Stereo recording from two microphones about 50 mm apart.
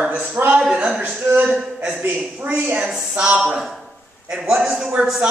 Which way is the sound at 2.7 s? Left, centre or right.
Right.